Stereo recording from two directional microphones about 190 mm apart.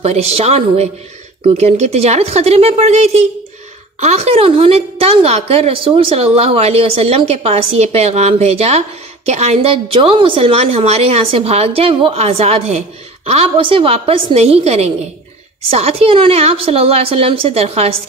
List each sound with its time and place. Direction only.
0.0 s a woman's voice: 35° right (ahead or behind)